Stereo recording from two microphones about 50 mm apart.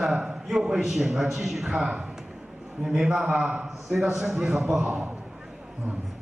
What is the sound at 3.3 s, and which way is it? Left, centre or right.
Speech, right.